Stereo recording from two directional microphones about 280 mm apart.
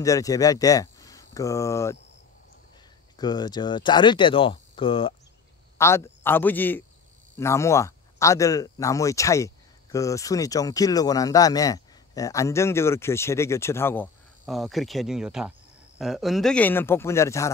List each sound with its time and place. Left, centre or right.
0.0 s speech: centre
3.2 s a man's voice: centre